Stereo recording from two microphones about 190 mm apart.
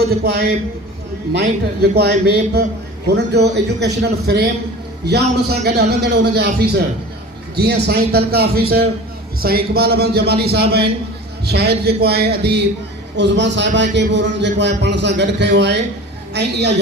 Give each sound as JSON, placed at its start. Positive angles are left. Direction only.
{"t": 1.8, "sound": "a man's voice", "side_deg": -60}